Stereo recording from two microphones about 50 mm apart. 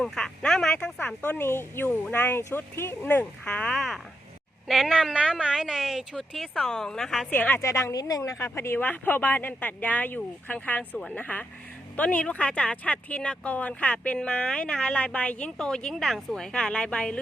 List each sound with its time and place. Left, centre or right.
0.0 s a sound: centre
0.9 s speech: left
1.4 s speech: left
3.4 s speech: left
3.8 s speech: centre
5.1 s a woman's voice: centre
6.5 s a woman's voice: centre
7.3 s speech: left
7.6 s speech: left
8.4 s speech: left
8.8 s speech: left
12.4 s speech: centre
16.5 s a woman's voice: centre